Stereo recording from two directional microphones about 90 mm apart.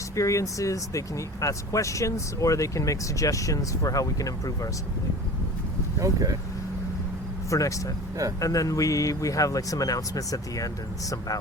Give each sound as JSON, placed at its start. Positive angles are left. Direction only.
{"t": 0.2, "sound": "speech", "side_deg": 35}
{"t": 6.0, "sound": "speech", "side_deg": -40}
{"t": 7.5, "sound": "speech", "side_deg": 35}